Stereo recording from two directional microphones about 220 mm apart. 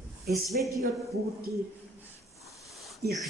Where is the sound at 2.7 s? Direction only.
Centre (ahead or behind).